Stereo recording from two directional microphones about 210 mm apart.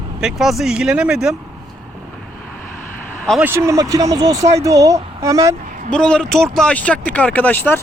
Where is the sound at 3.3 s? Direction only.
10° right (ahead or behind).